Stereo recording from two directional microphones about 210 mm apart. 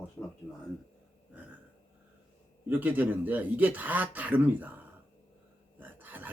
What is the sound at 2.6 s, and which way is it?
Speech, 10° right (ahead or behind).